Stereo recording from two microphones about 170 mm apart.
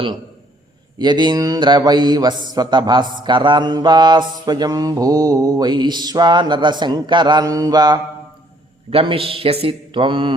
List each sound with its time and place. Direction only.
0.9 s a man's voice: 25° right (ahead or behind)
8.9 s a man's voice: 35° right (ahead or behind)